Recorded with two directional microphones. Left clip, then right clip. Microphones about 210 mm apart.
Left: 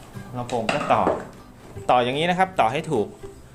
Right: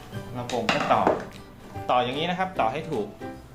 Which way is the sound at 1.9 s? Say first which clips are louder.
Left 5 dB; 50° left (ahead or behind).